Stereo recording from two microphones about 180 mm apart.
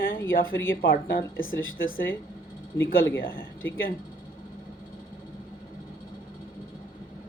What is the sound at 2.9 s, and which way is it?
Speech, 10° left (ahead or behind).